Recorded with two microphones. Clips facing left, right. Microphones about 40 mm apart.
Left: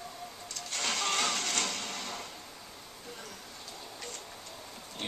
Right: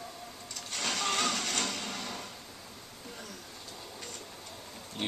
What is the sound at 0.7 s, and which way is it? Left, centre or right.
Printer, centre.